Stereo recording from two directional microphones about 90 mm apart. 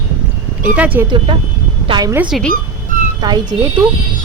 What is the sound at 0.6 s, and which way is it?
Speech, 20° right (ahead or behind).